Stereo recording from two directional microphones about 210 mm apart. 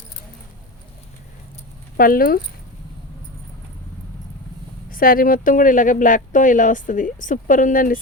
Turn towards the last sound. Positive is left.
turn(degrees=40)  # may be behind; listen again after turning